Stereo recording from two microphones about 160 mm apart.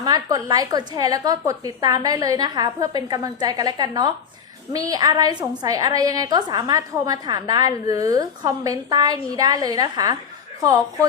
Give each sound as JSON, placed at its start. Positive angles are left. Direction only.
{"t": 0.0, "sound": "a woman's voice", "side_deg": -25}